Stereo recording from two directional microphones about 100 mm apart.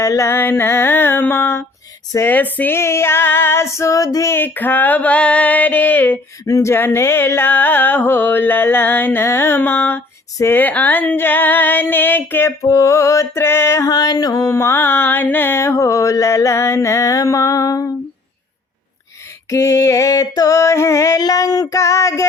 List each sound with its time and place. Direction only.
0.0 s music: 30° left (ahead or behind)
4.3 s a sound: 20° left (ahead or behind)
6.4 s music: 30° left (ahead or behind)
13.9 s mantra: 40° left (ahead or behind)
19.5 s mantra: 30° left (ahead or behind)